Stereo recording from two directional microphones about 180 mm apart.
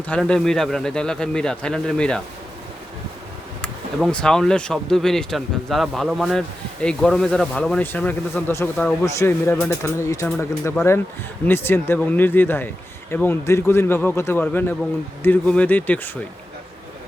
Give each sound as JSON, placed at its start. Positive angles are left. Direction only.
{"t": 0.1, "sound": "speech", "side_deg": 5}
{"t": 3.6, "sound": "speech", "side_deg": 5}